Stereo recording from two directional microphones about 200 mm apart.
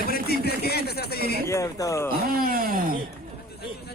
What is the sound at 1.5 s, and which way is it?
Speech, 15° left (ahead or behind).